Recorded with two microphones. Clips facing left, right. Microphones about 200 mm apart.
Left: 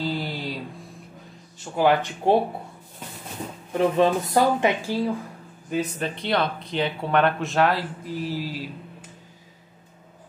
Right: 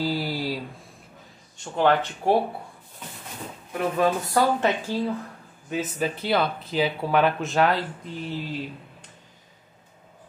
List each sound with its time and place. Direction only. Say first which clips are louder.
0.0 s mantra: right 2 dB; 5° right (ahead or behind)
1.6 s speech: left 1 dB; 10° left (ahead or behind)
3.7 s speech: left 3 dB; 25° left (ahead or behind)
5.7 s speech: even; centre (ahead or behind)